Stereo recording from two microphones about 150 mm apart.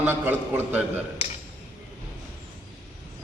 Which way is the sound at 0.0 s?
15° right (ahead or behind).